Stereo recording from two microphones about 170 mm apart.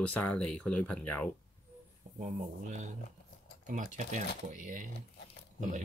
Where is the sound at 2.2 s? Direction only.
45° right (ahead or behind).